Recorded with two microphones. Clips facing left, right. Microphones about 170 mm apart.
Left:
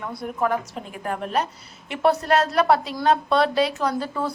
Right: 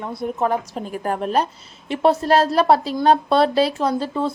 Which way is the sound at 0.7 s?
40° right (ahead or behind).